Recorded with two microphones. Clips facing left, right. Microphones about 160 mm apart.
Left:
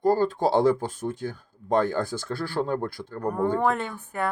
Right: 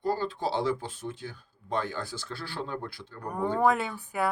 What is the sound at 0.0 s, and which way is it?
Speech, 45° left (ahead or behind).